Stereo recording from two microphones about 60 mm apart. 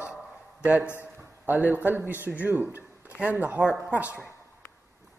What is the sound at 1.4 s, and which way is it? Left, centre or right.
A man's voice, right.